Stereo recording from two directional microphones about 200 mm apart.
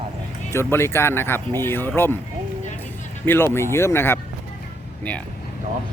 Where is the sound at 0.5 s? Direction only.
10° left (ahead or behind).